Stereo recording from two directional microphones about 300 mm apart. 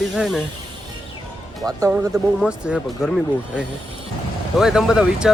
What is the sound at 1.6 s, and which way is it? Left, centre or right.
Speech, centre.